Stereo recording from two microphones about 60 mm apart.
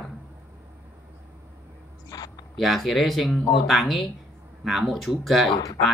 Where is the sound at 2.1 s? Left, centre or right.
Left.